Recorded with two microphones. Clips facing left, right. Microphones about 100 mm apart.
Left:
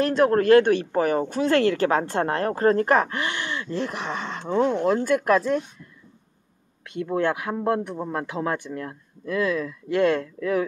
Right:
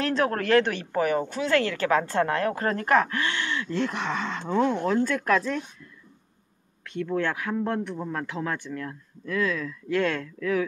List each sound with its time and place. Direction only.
0.2 s speech: 25° left (ahead or behind)
6.8 s speech: 15° left (ahead or behind)